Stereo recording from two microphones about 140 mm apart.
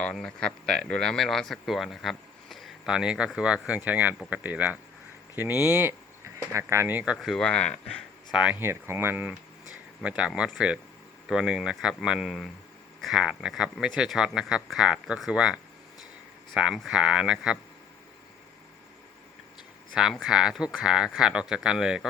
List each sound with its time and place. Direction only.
0.0 s speech: 5° left (ahead or behind)
8.3 s speech: 10° right (ahead or behind)
19.9 s speech: 5° right (ahead or behind)